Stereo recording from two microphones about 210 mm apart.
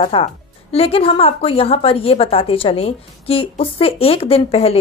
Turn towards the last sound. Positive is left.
turn(degrees=30)  # may be behind; listen again after turning